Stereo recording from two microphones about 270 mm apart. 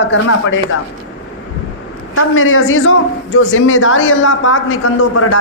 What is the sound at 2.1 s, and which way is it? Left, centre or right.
A woman's voice, left.